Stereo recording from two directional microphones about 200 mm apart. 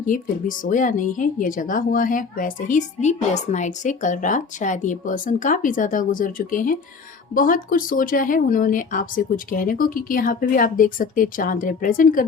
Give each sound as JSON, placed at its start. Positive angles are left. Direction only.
{"t": 0.0, "sound": "speech", "side_deg": 40}